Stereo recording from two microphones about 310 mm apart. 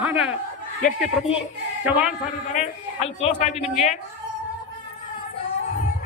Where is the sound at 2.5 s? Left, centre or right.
Left.